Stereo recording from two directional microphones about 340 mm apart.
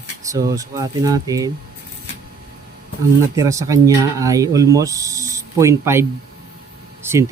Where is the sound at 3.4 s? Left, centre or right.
Centre.